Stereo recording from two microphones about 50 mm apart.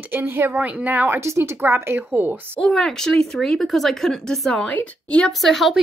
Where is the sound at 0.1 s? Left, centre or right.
Right.